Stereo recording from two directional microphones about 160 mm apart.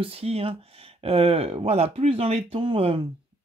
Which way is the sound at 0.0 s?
35° right (ahead or behind).